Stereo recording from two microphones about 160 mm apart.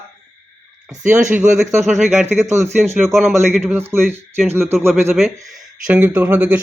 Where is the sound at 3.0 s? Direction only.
5° left (ahead or behind).